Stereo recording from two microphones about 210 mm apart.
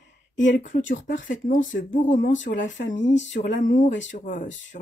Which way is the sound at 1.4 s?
40° left (ahead or behind).